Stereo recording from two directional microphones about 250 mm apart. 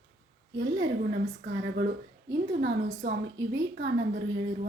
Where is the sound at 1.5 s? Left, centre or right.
Right.